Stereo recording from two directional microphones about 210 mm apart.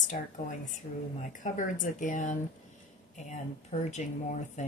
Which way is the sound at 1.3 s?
40° left (ahead or behind).